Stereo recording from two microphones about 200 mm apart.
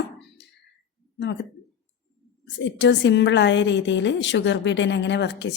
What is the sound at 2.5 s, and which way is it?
A woman's voice, 65° left (ahead or behind).